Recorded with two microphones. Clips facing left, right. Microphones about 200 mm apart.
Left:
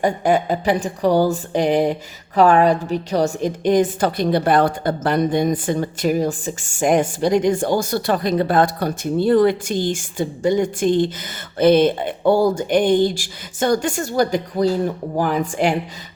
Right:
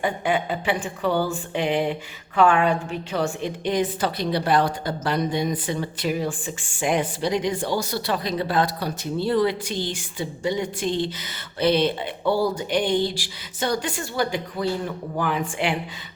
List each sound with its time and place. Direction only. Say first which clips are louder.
0.0 s speech: left 6 dB; 40° left (ahead or behind)